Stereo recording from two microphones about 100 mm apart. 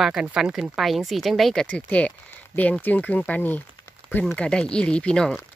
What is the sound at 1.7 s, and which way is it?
Speech, 15° left (ahead or behind).